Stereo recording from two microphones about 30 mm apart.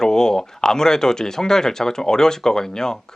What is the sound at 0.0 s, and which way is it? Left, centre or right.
Speech, centre.